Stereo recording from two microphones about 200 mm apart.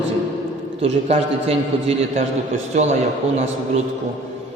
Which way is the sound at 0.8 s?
30° right (ahead or behind).